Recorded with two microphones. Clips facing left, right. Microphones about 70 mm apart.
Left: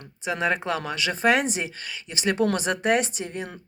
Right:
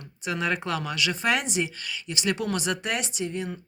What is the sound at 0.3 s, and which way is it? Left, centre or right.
Speech, left.